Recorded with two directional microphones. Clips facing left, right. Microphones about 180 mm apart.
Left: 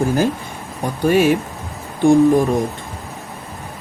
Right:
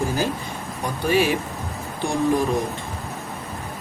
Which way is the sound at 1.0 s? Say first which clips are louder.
Left 6 dB; 50° left (ahead or behind).